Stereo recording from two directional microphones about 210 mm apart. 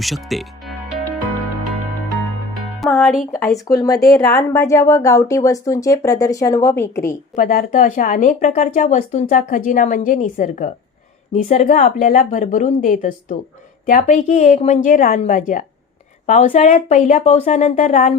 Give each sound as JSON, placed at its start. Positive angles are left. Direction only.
{"t": 0.0, "sound": "speech", "side_deg": 0}
{"t": 2.8, "sound": "speech", "side_deg": 0}
{"t": 3.7, "sound": "speech", "side_deg": 15}
{"t": 7.3, "sound": "speech", "side_deg": 40}